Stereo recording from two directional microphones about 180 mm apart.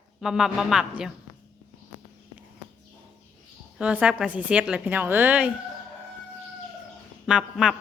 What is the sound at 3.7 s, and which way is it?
A woman's voice, 5° right (ahead or behind).